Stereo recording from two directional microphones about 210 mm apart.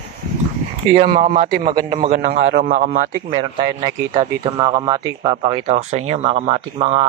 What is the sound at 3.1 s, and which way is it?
A man's voice, 25° right (ahead or behind).